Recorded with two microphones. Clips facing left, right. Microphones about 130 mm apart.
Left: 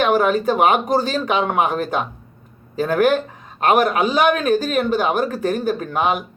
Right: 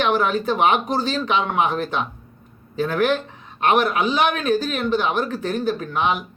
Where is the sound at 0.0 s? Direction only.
45° left (ahead or behind).